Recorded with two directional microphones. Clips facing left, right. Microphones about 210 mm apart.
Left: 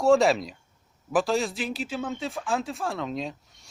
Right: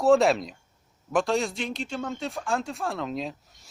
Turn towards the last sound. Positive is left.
turn(degrees=0)  # may be behind; listen again after turning